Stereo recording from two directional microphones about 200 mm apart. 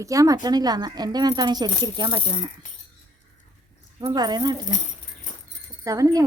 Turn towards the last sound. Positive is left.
turn(degrees=-15)  # may be behind; listen again after turning